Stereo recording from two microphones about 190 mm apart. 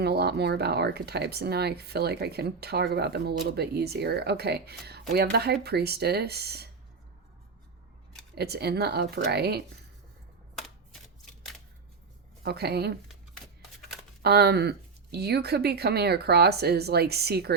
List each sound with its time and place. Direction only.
0.0 s speech: 60° right (ahead or behind)
8.4 s speech: 55° right (ahead or behind)
12.4 s a woman's voice: 55° right (ahead or behind)
13.1 s shuffling cards: centre (ahead or behind)
14.2 s speech: 55° right (ahead or behind)